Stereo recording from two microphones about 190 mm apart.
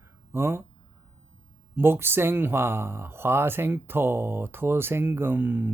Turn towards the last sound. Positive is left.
turn(degrees=-10)  # may be behind; listen again after turning